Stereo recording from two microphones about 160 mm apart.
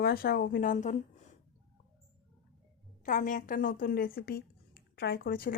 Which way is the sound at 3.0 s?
55° left (ahead or behind).